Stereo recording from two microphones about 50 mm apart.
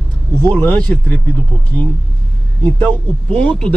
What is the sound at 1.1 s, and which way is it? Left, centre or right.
Speech, left.